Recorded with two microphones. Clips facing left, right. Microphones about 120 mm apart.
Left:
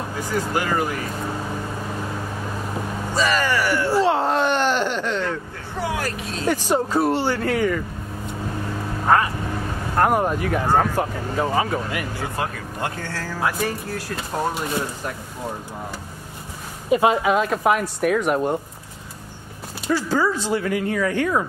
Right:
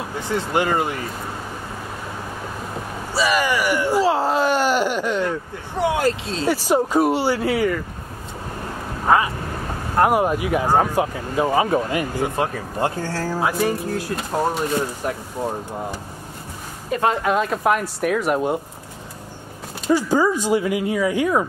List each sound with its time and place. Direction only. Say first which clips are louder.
0.4 s speech: right 2 dB; 25° right (ahead or behind)
3.2 s speech: right 1 dB; 15° right (ahead or behind)
4.0 s speech: even; centre (ahead or behind)
5.8 s speech: right 6 dB; 25° right (ahead or behind)
6.7 s speech: right 3 dB; 10° right (ahead or behind)
9.0 s speech: right 1 dB; 5° right (ahead or behind); by 12.9 s 25° right (ahead or behind)
13.0 s speech: right 5 dB; 40° right (ahead or behind)
13.4 s speech: right 2 dB; 15° right (ahead or behind)
16.9 s speech: left 2 dB; 10° left (ahead or behind)
19.9 s speech: right 3 dB; 15° right (ahead or behind)